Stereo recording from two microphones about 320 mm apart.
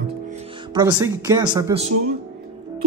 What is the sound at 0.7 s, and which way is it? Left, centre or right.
Speech, centre.